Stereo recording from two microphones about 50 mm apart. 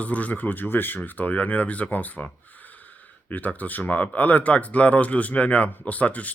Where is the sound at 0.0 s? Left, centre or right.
Left.